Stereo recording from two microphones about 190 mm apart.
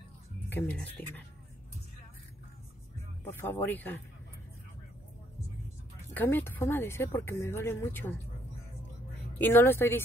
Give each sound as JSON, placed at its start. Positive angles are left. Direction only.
{"t": 0.5, "sound": "speech", "side_deg": 10}
{"t": 3.3, "sound": "speech", "side_deg": 10}
{"t": 6.1, "sound": "speech", "side_deg": 10}
{"t": 9.4, "sound": "speech", "side_deg": 10}